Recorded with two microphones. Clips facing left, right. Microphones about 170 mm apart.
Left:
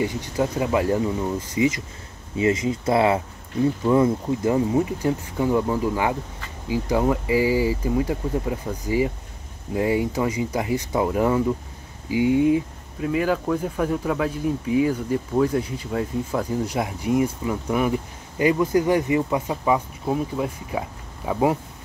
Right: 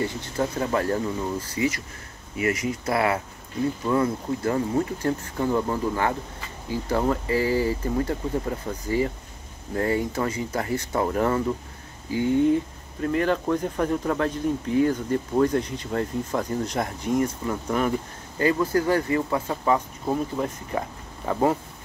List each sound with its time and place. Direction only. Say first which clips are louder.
0.0 s speech: left 3 dB; 15° left (ahead or behind)